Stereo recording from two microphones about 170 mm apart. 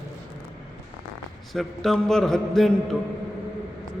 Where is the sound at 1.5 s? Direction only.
Centre (ahead or behind).